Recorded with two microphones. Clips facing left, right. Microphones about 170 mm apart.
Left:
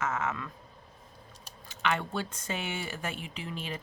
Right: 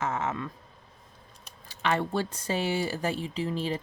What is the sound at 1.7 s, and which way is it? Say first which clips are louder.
Speech: right 3 dB; 35° right (ahead or behind).